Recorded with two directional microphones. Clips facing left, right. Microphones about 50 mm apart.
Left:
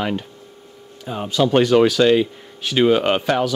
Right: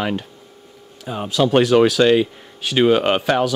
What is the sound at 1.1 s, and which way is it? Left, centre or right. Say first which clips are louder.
Speech: right 1 dB; centre.